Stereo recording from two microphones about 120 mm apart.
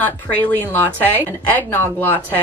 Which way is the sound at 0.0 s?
15° left (ahead or behind).